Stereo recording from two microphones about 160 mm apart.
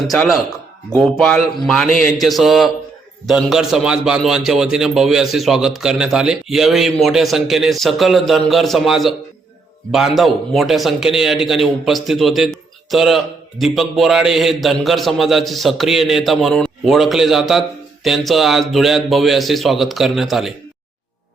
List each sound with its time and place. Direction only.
0.1 s a man's voice: centre (ahead or behind)